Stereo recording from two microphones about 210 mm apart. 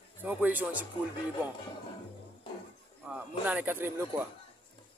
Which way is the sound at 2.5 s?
25° left (ahead or behind).